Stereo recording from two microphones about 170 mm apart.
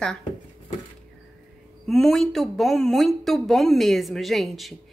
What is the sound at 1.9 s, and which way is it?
A woman's voice, centre (ahead or behind).